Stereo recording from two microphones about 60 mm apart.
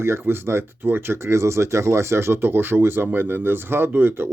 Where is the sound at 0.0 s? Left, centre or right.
Right.